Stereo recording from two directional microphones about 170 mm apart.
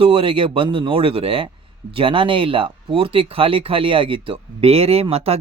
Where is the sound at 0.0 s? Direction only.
30° right (ahead or behind).